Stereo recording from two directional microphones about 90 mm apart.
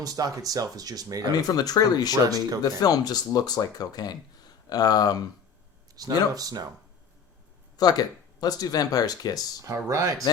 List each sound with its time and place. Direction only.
0.0 s speech: 45° right (ahead or behind)
1.4 s speech: 45° left (ahead or behind)
2.2 s speech: 45° right (ahead or behind)
2.8 s speech: 45° left (ahead or behind)
6.0 s speech: 45° right (ahead or behind)
7.8 s speech: 45° left (ahead or behind)
9.6 s speech: 35° right (ahead or behind)